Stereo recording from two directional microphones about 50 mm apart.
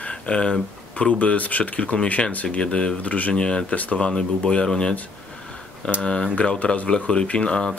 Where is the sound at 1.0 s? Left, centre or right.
Left.